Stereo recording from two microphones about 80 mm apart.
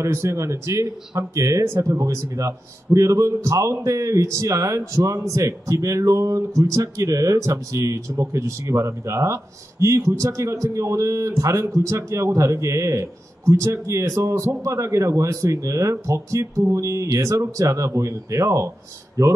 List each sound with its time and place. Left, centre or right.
0.0 s speech: right